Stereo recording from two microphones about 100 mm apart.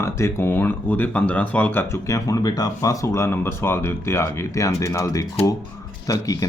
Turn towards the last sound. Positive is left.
turn(degrees=35)  # may be behind; listen again after turning